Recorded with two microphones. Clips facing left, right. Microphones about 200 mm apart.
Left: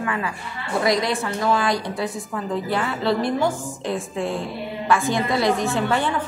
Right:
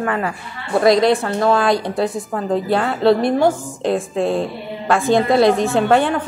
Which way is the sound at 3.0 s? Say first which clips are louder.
Right 8 dB; 65° right (ahead or behind).